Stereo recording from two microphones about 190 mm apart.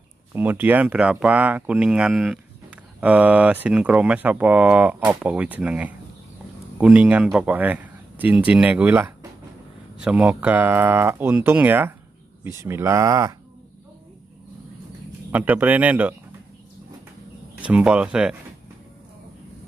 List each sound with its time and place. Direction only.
0.3 s speech: 10° right (ahead or behind)
15.3 s speech: 10° right (ahead or behind)
17.6 s speech: 5° right (ahead or behind)